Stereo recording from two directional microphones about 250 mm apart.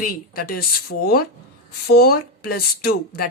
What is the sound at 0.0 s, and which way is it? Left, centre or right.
Speech, left.